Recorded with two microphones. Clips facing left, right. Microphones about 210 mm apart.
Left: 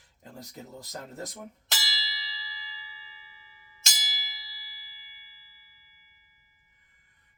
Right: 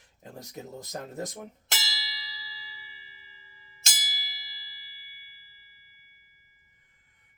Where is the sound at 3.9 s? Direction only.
50° right (ahead or behind).